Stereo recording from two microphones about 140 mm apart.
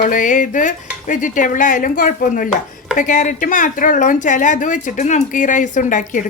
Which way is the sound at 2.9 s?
70° left (ahead or behind).